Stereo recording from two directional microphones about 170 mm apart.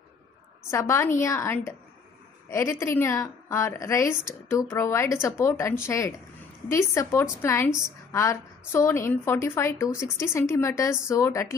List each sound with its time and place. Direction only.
0.7 s a woman's voice: 15° left (ahead or behind)